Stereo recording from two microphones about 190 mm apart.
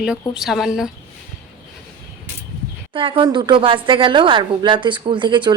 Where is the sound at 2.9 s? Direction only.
25° right (ahead or behind).